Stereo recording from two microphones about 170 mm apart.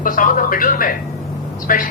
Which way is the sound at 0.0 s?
50° left (ahead or behind).